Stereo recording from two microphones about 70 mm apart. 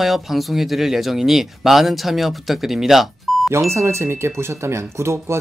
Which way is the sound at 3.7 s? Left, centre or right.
Right.